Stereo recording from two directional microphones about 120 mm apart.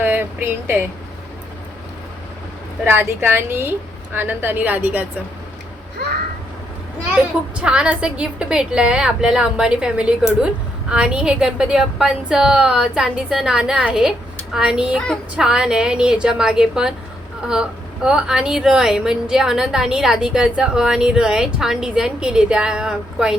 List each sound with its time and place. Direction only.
0.0 s speech: 15° right (ahead or behind)
2.8 s a woman's voice: 20° right (ahead or behind)
7.5 s a woman's voice: 10° right (ahead or behind)
14.9 s a sound: 5° left (ahead or behind)
15.4 s speech: 5° right (ahead or behind)